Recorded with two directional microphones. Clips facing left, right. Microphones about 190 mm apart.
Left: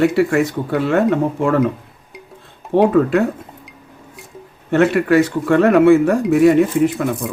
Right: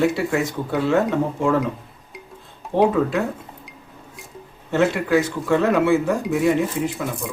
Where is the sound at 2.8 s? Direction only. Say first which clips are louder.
Left 4 dB; 60° left (ahead or behind).